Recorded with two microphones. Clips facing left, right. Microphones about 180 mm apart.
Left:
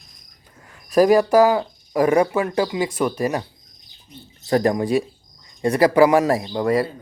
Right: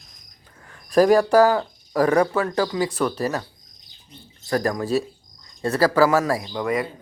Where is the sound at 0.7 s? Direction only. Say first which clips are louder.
Left 1 dB; 10° left (ahead or behind).